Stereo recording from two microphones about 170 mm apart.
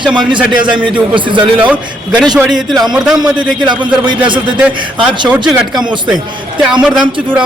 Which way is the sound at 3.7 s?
25° right (ahead or behind).